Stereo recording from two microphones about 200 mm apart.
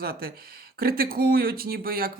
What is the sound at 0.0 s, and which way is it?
Speech, 50° right (ahead or behind).